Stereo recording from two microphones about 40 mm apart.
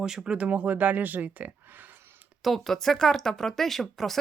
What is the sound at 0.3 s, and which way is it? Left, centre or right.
Speech, right.